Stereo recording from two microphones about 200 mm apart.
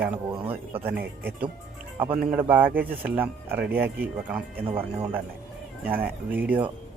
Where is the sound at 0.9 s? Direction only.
10° right (ahead or behind).